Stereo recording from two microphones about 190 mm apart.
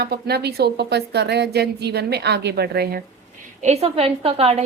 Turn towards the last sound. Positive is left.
turn(degrees=-30)  # may be behind; listen again after turning